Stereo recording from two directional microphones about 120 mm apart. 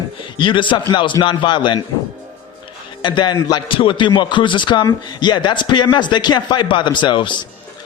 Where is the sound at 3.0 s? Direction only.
40° left (ahead or behind).